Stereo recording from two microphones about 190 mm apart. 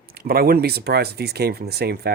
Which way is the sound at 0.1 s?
55° right (ahead or behind).